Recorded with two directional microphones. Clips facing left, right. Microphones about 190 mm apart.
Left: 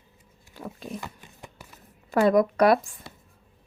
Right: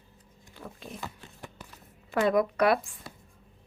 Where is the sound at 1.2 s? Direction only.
10° left (ahead or behind).